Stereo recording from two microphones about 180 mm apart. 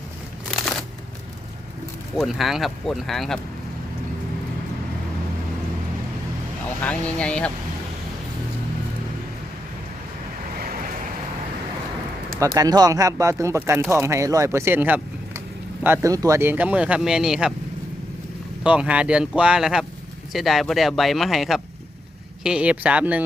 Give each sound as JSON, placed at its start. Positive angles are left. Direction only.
{"t": 0.5, "sound": "shuffling cards", "side_deg": 5}
{"t": 2.1, "sound": "speech", "side_deg": 0}
{"t": 6.8, "sound": "speech", "side_deg": 5}
{"t": 12.4, "sound": "speech", "side_deg": -20}
{"t": 18.6, "sound": "speech", "side_deg": -5}